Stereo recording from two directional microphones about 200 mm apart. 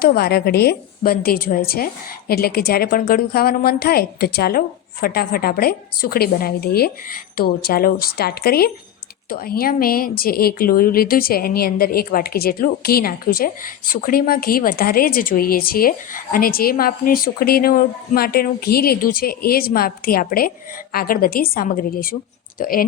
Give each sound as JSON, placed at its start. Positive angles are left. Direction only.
{"t": 0.0, "sound": "speech", "side_deg": 50}